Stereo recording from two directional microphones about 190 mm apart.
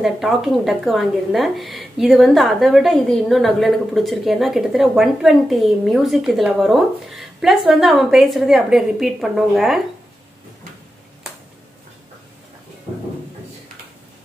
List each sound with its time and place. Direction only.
0.0 s a woman's voice: centre (ahead or behind)